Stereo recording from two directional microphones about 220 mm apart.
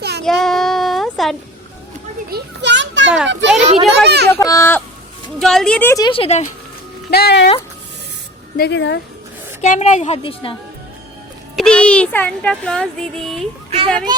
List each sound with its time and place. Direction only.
0.3 s child singing: centre (ahead or behind)
2.3 s children playing: 50° right (ahead or behind)
3.6 s a child's voice: 30° right (ahead or behind)
4.0 s a child's voice: 50° right (ahead or behind)
4.4 s speech: 15° left (ahead or behind)
5.4 s speech: centre (ahead or behind)
6.1 s speech: 25° left (ahead or behind)
7.1 s speech: 45° left (ahead or behind)
8.5 s speech: 50° left (ahead or behind)
9.6 s a woman's voice: 30° left (ahead or behind)
11.5 s speech: 5° left (ahead or behind)
13.7 s a child's voice: 25° right (ahead or behind)